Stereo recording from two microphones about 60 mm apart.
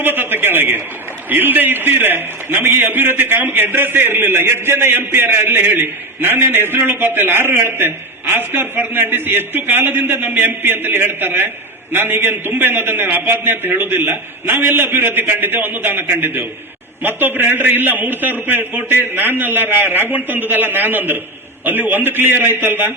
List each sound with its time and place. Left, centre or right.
0.0 s a man's voice: right